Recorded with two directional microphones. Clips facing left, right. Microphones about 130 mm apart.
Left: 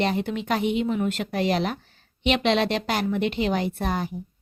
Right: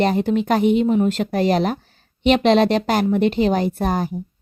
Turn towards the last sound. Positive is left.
turn(degrees=-40)  # may be behind; listen again after turning